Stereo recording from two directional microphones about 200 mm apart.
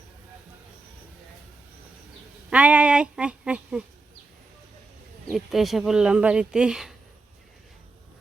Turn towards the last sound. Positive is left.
turn(degrees=0)  # may be behind; listen again after turning